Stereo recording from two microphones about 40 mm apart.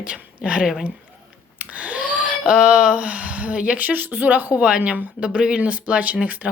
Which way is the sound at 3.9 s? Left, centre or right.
Right.